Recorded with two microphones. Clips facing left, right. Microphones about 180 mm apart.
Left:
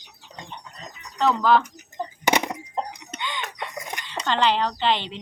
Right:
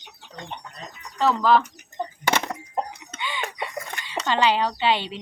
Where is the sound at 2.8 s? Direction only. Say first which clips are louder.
Right 1 dB; 10° right (ahead or behind).